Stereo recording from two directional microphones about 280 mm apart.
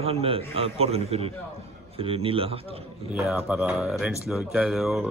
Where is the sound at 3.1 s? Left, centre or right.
Centre.